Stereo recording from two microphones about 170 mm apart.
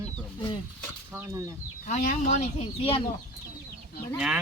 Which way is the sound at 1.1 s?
20° right (ahead or behind).